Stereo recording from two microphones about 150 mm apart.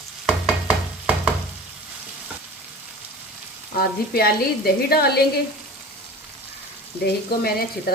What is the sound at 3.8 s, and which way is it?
A woman's voice, 90° left.